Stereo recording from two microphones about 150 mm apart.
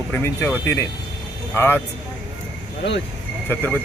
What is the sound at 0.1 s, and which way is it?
A man's voice, 15° left (ahead or behind).